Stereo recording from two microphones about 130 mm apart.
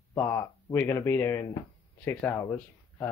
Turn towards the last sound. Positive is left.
turn(degrees=20)  # may be behind; listen again after turning